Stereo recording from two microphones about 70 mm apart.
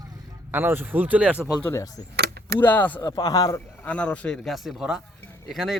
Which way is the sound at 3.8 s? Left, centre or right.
Centre.